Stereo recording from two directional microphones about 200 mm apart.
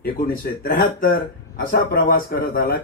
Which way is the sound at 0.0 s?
45° left (ahead or behind).